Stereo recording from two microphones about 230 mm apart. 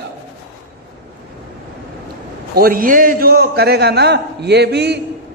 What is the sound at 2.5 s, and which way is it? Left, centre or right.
A man's voice, right.